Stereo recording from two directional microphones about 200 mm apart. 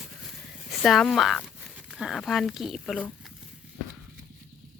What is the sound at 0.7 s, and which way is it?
Speech, centre (ahead or behind).